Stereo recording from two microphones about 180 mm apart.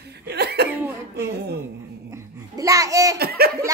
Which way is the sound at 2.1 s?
15° right (ahead or behind).